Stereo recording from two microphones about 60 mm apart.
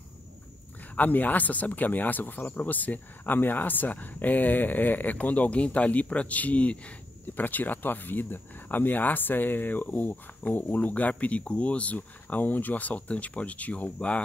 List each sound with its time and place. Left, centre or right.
0.9 s speech: left